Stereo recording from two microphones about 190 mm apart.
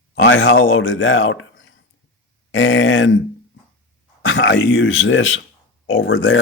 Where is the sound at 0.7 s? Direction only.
90° left.